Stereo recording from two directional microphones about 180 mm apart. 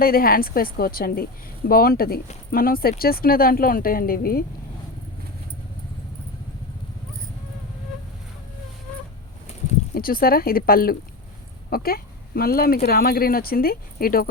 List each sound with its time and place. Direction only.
0.0 s speech: 55° left (ahead or behind)
9.9 s speech: 55° left (ahead or behind)